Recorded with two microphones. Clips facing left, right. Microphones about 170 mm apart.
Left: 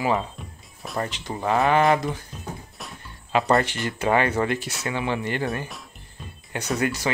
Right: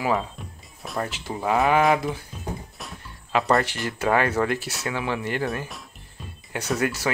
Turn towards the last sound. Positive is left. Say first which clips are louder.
# even
turn(degrees=0)  # may be behind; listen again after turning